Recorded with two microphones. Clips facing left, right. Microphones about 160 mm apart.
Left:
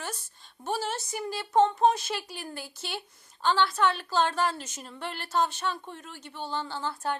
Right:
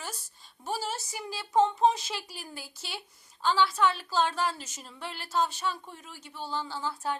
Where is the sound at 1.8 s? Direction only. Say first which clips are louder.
Left 1 dB; 60° left (ahead or behind).